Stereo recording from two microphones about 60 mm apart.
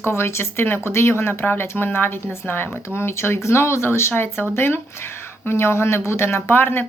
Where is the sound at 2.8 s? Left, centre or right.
Left.